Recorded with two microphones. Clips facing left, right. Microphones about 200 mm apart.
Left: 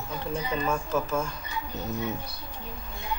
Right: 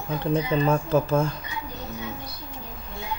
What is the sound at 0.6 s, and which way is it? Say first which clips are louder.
Speech: right 6 dB; 30° right (ahead or behind).